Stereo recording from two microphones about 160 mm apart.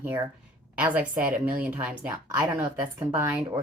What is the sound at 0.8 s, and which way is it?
A woman's voice, 10° right (ahead or behind).